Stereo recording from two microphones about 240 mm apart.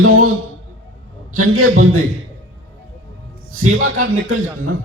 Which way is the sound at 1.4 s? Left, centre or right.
Right.